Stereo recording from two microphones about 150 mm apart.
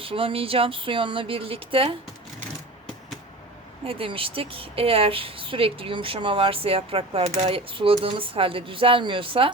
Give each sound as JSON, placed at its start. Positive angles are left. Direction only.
{"t": 0.0, "sound": "speech", "side_deg": -40}
{"t": 3.8, "sound": "speech", "side_deg": -35}